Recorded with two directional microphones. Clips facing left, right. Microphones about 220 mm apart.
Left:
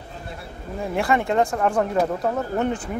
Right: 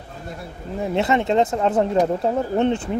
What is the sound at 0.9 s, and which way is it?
Speech, 20° right (ahead or behind).